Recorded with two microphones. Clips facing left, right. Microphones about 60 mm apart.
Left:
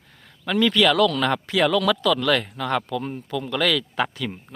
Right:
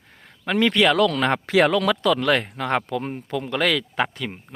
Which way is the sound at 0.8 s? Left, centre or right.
Right.